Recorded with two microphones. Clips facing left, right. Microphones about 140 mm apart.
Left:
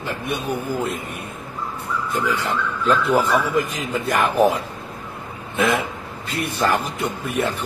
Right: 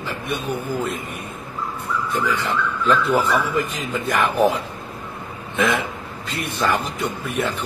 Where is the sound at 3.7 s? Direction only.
40° left (ahead or behind).